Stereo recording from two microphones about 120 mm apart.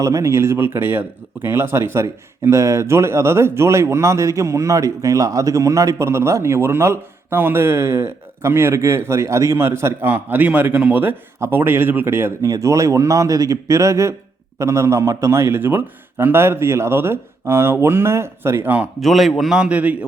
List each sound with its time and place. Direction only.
0.0 s speech: 25° right (ahead or behind)
18.9 s a man's voice: centre (ahead or behind)